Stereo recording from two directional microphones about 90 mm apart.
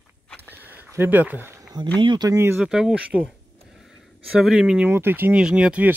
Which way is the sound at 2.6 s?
10° right (ahead or behind).